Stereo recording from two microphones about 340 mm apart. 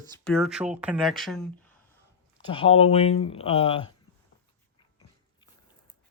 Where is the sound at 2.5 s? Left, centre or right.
Centre.